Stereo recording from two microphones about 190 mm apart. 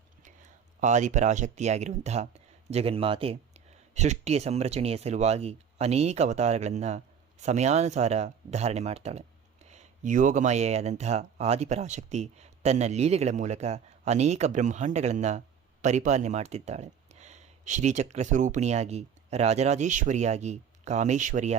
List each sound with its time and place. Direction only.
0.4 s speech: 40° right (ahead or behind)